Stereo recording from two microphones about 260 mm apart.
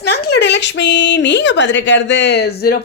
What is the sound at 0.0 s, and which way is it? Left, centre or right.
A woman's voice, left.